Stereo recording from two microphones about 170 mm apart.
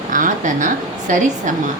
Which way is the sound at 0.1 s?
50° right (ahead or behind).